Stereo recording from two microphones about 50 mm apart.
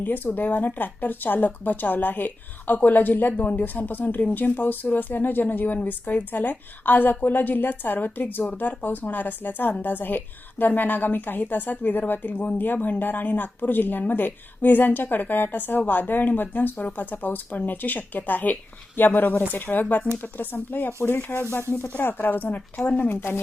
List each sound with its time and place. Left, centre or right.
0.0 s a woman's voice: left
21.7 s a woman's voice: left
23.0 s speech: left